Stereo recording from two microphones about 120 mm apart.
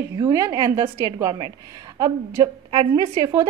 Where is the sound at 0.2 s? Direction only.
30° right (ahead or behind).